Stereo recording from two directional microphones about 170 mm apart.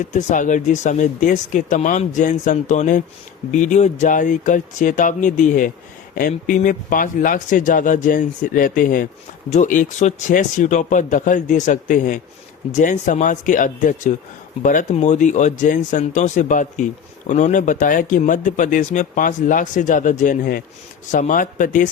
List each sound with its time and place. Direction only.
0.1 s speech: 45° left (ahead or behind)